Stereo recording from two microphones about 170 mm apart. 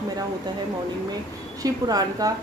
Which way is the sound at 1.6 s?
20° right (ahead or behind).